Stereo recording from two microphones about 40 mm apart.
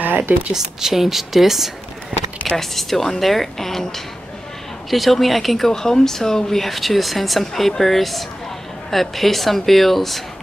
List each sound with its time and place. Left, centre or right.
0.0 s a sound: right
0.5 s speech: centre
2.5 s a woman's voice: centre
5.7 s speech: centre